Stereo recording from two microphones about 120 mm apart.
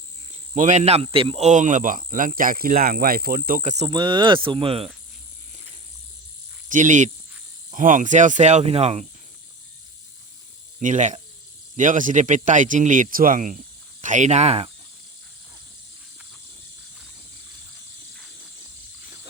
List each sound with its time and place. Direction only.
0.5 s speech: 90° right; by 1.5 s 50° right (ahead or behind)
1.5 s speech: 90° right
3.6 s speech: 75° right (ahead or behind)
3.8 s speech: 40° right (ahead or behind)
6.7 s speech: 90° right; by 9.0 s 60° right (ahead or behind)
10.8 s speech: 90° right; by 14.7 s 65° right (ahead or behind)